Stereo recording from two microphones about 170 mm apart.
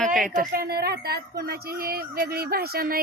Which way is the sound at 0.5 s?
65° right (ahead or behind).